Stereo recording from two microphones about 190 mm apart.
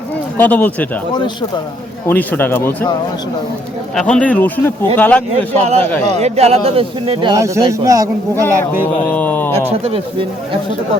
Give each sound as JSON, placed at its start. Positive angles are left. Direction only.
{"t": 0.3, "sound": "speech", "side_deg": 10}
{"t": 1.1, "sound": "speech", "side_deg": 25}
{"t": 2.0, "sound": "speech", "side_deg": 10}
{"t": 3.9, "sound": "speech", "side_deg": 5}
{"t": 5.5, "sound": "speech", "side_deg": -35}
{"t": 5.8, "sound": "speech", "side_deg": 10}
{"t": 6.1, "sound": "speech", "side_deg": -35}
{"t": 9.0, "sound": "speech", "side_deg": 10}
{"t": 9.7, "sound": "speech", "side_deg": -30}